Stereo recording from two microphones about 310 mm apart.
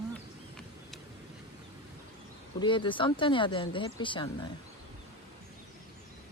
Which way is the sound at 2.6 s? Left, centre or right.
Centre.